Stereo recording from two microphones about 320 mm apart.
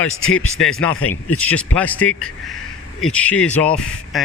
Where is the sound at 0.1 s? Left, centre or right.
Left.